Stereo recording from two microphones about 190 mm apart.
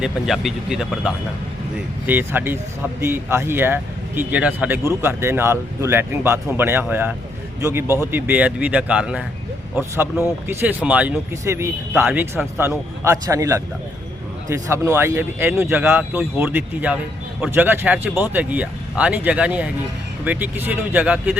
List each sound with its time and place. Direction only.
0.0 s speech: centre (ahead or behind)